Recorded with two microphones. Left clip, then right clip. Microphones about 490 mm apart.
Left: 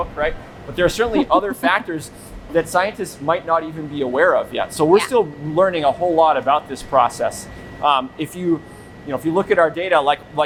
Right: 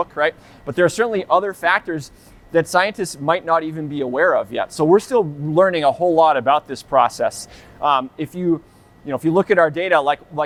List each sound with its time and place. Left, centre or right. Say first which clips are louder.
0.0 s a man's voice: right 2 dB; right
0.8 s a man's voice: even; right
9.0 s speech: right 1 dB; right